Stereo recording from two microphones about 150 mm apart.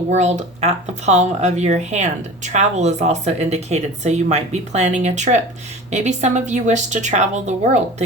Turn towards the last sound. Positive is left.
turn(degrees=-50)  # may be behind; listen again after turning